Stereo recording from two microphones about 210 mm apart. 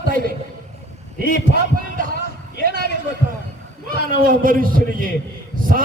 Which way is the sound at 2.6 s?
45° right (ahead or behind).